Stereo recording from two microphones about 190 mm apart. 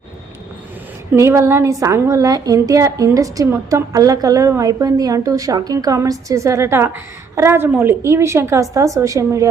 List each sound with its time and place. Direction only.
1.1 s a woman's voice: 15° right (ahead or behind)